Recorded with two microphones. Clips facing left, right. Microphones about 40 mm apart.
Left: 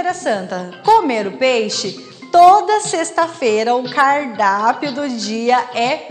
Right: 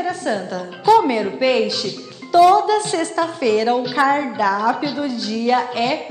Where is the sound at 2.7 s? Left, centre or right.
Centre.